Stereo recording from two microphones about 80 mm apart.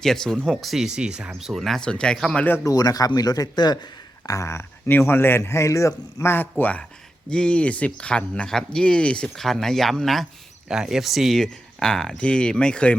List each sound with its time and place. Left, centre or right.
0.0 s speech: centre
2.6 s speech: left
4.3 s a man's voice: left
6.3 s speech: left